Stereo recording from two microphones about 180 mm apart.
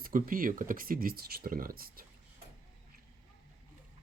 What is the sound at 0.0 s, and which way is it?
Speech, 50° right (ahead or behind).